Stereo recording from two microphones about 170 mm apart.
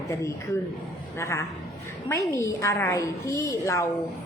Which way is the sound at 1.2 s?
15° left (ahead or behind).